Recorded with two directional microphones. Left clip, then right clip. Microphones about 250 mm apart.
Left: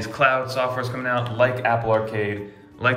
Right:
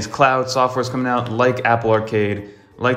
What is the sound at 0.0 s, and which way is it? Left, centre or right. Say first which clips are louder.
A man's voice: right 4 dB; centre.